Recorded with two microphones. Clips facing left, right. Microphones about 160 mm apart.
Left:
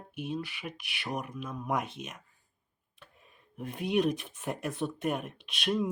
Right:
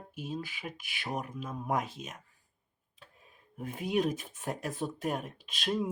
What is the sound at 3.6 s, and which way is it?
Speech, 5° right (ahead or behind).